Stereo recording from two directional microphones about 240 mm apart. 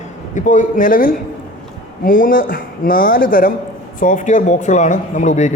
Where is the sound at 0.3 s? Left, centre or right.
Left.